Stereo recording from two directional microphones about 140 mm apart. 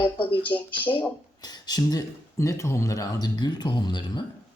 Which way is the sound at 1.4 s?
30° left (ahead or behind).